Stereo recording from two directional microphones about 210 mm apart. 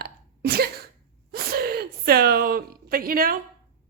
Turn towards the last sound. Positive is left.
turn(degrees=-45)  # may be behind; listen again after turning